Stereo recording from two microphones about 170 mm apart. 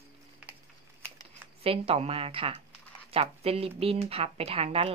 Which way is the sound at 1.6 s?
35° right (ahead or behind).